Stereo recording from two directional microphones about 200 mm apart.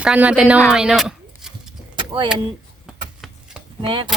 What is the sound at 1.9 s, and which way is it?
Vehicle, 25° right (ahead or behind).